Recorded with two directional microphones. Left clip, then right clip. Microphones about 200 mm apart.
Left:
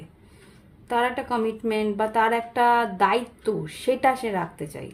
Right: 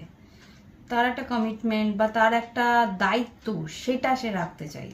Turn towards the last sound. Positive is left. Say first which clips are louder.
# left 3 dB
turn(degrees=50)  # may be behind; listen again after turning